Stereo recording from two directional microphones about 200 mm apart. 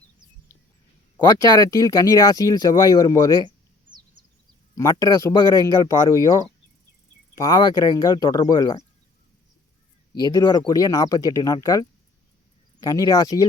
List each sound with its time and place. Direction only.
1.4 s speech: 20° left (ahead or behind)
4.7 s speech: 15° left (ahead or behind)
10.3 s speech: 20° left (ahead or behind)